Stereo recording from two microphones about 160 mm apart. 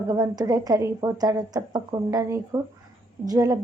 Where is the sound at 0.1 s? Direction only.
25° right (ahead or behind).